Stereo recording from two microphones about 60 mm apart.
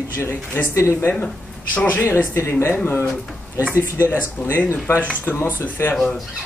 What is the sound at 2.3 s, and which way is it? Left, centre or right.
Speech, left.